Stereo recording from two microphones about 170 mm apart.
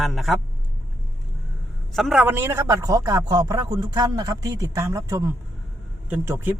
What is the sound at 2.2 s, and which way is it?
A man's voice, 15° right (ahead or behind).